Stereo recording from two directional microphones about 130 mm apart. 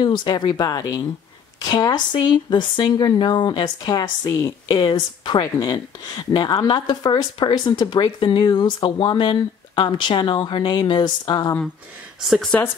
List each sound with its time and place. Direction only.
0.0 s a woman's voice: 35° left (ahead or behind)
12.3 s speech: 5° left (ahead or behind)